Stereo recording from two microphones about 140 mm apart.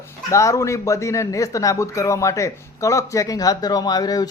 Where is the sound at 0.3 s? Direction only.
20° left (ahead or behind).